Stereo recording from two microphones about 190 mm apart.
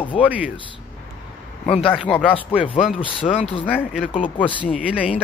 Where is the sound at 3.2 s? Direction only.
30° left (ahead or behind).